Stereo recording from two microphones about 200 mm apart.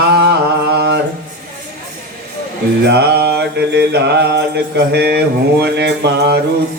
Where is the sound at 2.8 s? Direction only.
55° right (ahead or behind).